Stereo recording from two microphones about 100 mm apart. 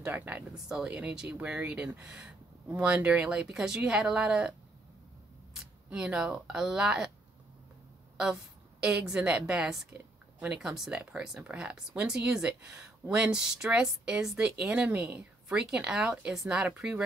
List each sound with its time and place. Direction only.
0.0 s speech: 15° right (ahead or behind)
5.9 s speech: 10° right (ahead or behind)
8.8 s speech: 10° right (ahead or behind)